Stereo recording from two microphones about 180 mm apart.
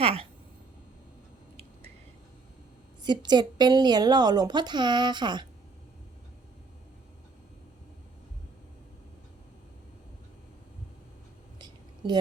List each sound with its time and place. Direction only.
0.0 s speech: 35° right (ahead or behind)
3.0 s a woman's voice: 25° right (ahead or behind)
11.6 s a sound: 25° right (ahead or behind)